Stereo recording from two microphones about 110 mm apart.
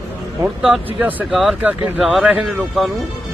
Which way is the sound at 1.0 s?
15° right (ahead or behind).